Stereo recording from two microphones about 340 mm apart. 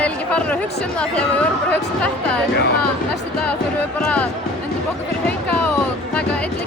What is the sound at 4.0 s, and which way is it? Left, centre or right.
Speech, centre.